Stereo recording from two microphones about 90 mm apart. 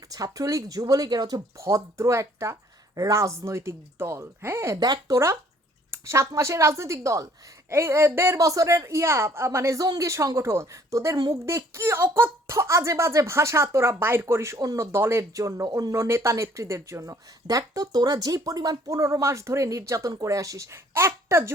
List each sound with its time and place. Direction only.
0.1 s speech: 40° right (ahead or behind)
1.6 s speech: 35° right (ahead or behind)
4.8 s speech: 45° right (ahead or behind)